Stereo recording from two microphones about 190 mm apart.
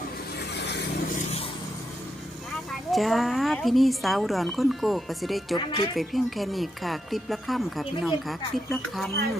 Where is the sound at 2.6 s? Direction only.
Centre (ahead or behind).